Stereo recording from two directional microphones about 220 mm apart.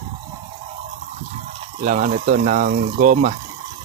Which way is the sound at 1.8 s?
35° right (ahead or behind).